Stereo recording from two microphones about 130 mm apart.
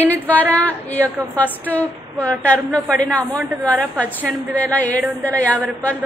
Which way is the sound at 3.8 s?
15° right (ahead or behind).